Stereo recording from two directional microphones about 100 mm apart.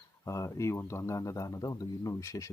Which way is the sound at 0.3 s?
30° left (ahead or behind).